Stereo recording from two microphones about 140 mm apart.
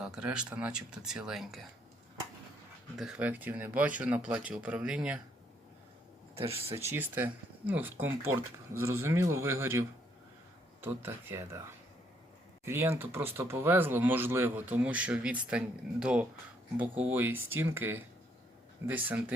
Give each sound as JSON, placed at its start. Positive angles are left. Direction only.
{"t": 0.0, "sound": "speech", "side_deg": -5}
{"t": 3.0, "sound": "speech", "side_deg": -10}
{"t": 6.3, "sound": "speech", "side_deg": -45}
{"t": 6.7, "sound": "speech", "side_deg": -15}
{"t": 12.6, "sound": "speech", "side_deg": -20}